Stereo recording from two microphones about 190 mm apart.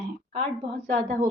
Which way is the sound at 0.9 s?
40° right (ahead or behind).